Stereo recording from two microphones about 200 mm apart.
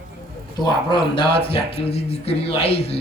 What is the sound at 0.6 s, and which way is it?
Speech, 20° left (ahead or behind).